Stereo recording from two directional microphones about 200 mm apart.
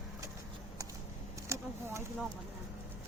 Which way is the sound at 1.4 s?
15° right (ahead or behind).